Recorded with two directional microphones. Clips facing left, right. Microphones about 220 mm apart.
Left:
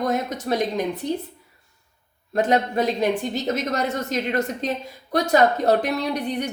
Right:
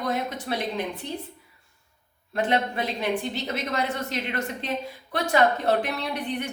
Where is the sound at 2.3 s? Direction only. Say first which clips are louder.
Left 5 dB; 40° left (ahead or behind).